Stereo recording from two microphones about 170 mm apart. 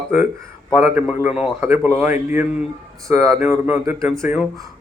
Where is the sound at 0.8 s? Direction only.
10° right (ahead or behind).